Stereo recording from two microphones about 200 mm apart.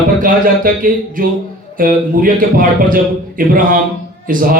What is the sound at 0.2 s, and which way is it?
A man's voice, 45° right (ahead or behind).